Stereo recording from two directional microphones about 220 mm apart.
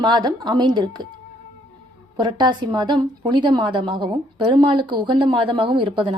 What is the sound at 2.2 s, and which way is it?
A woman's voice, 20° right (ahead or behind).